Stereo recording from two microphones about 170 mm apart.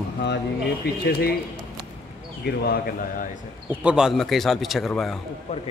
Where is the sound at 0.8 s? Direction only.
75° left (ahead or behind).